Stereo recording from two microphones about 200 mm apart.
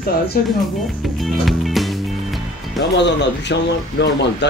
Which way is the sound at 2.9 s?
60° left (ahead or behind).